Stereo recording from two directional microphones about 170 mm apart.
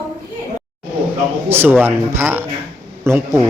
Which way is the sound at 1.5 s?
15° right (ahead or behind).